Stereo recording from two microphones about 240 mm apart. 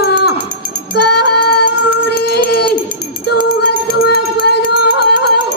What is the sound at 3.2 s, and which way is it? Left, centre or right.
Music, left.